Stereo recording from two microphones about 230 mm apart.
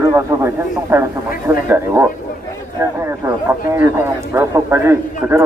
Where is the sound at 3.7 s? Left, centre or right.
Centre.